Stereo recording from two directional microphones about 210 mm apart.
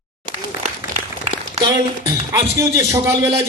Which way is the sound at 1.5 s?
20° right (ahead or behind).